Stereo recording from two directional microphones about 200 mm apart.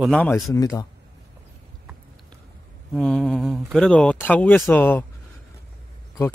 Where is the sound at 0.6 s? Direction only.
20° left (ahead or behind).